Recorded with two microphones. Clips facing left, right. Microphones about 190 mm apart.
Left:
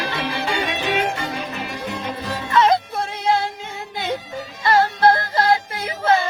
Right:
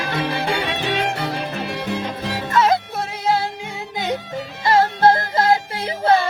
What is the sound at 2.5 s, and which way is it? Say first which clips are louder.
Music: left 1 dB; 5° right (ahead or behind).